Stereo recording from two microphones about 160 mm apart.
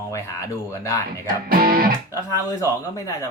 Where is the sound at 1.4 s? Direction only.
70° right (ahead or behind).